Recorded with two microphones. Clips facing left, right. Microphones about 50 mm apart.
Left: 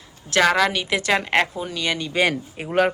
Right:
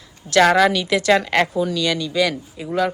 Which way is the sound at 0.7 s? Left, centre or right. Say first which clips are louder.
Right 4 dB; centre.